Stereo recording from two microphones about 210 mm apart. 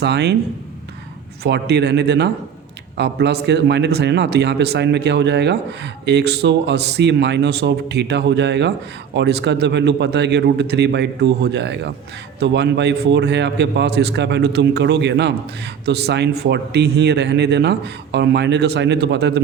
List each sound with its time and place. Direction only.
0.0 s a man's voice: 55° right (ahead or behind)
1.5 s a man's voice: 50° right (ahead or behind)